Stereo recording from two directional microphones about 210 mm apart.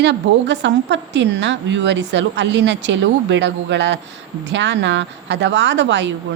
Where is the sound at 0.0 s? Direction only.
55° right (ahead or behind).